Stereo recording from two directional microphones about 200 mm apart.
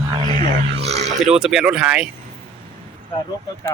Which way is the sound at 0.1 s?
30° right (ahead or behind).